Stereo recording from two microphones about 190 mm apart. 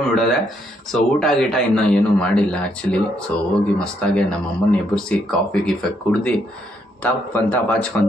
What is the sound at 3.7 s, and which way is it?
A man's voice, 5° left (ahead or behind).